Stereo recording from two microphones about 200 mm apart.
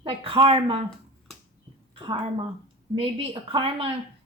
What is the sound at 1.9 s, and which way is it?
A woman's voice, 25° right (ahead or behind).